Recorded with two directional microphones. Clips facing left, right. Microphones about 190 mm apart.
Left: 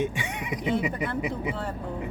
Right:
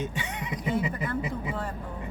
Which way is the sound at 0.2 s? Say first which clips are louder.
Left 2 dB; 15° left (ahead or behind).